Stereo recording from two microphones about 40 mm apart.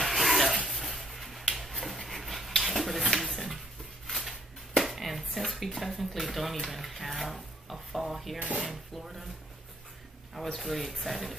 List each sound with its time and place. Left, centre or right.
0.0 s a sound: centre
5.8 s speech: centre
8.4 s speech: right
8.6 s speech: centre
10.3 s speech: centre